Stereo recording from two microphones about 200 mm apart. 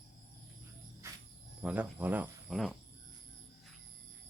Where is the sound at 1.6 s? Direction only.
5° right (ahead or behind).